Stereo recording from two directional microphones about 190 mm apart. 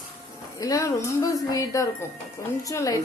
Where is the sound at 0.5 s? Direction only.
20° left (ahead or behind).